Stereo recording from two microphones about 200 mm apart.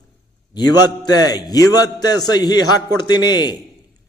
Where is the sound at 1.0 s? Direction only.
20° left (ahead or behind).